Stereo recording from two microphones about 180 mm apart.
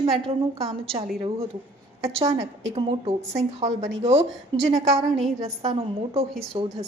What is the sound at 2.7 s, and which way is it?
A woman's voice, 35° right (ahead or behind).